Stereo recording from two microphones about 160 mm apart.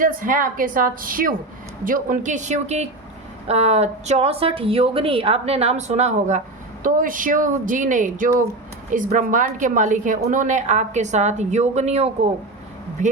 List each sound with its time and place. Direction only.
0.0 s a woman's voice: 55° right (ahead or behind)
6.8 s a woman's voice: 55° right (ahead or behind)